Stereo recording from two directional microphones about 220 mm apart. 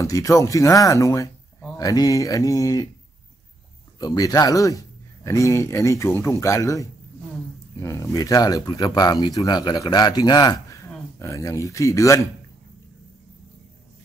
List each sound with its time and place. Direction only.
0.0 s speech: 15° left (ahead or behind)
4.0 s speech: 15° left (ahead or behind)